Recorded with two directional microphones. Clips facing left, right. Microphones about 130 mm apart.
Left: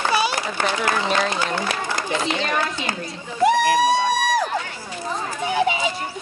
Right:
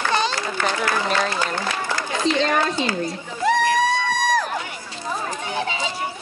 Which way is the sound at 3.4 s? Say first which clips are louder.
Left 2 dB; 15° left (ahead or behind).